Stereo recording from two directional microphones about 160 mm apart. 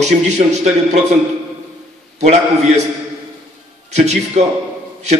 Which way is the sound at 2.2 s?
45° right (ahead or behind).